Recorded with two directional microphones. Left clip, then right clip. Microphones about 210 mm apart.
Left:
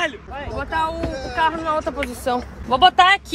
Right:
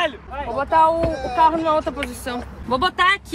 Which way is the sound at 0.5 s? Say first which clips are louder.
Right 7 dB; 5° right (ahead or behind).